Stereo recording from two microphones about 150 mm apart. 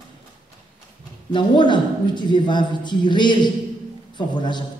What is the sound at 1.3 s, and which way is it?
A woman's voice, 30° left (ahead or behind).